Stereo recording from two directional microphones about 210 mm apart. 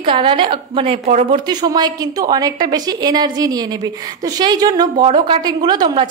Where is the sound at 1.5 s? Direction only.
20° right (ahead or behind).